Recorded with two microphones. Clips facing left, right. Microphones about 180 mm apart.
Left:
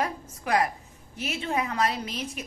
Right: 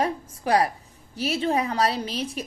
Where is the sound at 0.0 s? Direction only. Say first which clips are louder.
Right 4 dB; 30° right (ahead or behind).